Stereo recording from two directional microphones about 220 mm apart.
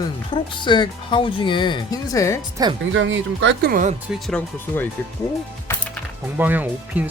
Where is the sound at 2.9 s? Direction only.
55° right (ahead or behind); by 3.9 s 40° right (ahead or behind).